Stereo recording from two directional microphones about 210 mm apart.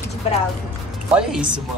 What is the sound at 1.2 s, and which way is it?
Speech, 5° right (ahead or behind).